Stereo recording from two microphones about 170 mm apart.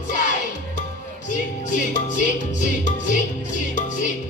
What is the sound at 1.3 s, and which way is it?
Music, 45° left (ahead or behind).